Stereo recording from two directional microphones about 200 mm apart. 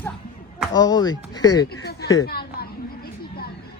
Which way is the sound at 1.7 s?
50° left (ahead or behind).